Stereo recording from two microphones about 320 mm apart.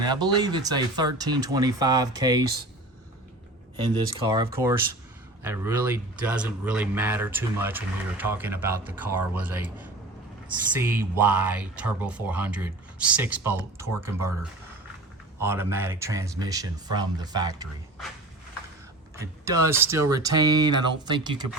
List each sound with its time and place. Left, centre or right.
0.1 s speech: centre
3.8 s speech: centre
15.4 s speech: centre
19.1 s speech: centre